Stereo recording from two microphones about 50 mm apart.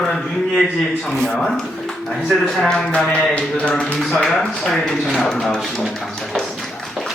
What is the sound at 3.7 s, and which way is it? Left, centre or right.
Speech, left.